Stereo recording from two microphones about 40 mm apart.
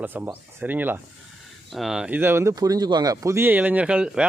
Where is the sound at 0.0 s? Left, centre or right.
Right.